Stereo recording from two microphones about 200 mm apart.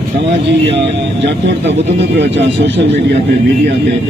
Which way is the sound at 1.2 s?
60° right (ahead or behind).